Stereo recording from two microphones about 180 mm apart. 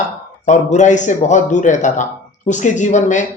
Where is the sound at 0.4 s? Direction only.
40° left (ahead or behind).